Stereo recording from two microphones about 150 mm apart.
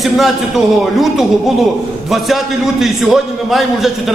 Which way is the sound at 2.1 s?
Centre (ahead or behind).